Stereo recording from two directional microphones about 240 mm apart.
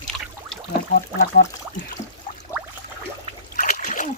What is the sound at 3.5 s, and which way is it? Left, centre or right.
Splash, left.